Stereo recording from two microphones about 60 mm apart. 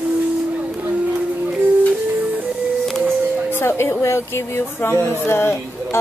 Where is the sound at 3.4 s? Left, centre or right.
Left.